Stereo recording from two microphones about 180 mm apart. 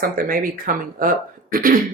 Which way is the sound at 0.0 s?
50° right (ahead or behind).